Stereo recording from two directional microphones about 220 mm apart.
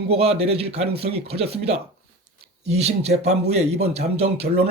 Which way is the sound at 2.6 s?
30° right (ahead or behind).